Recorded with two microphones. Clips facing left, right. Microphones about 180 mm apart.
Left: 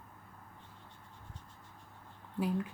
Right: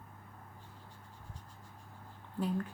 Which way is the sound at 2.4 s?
10° left (ahead or behind).